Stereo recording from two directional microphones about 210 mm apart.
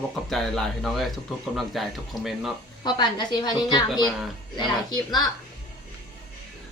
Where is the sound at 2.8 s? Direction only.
20° left (ahead or behind).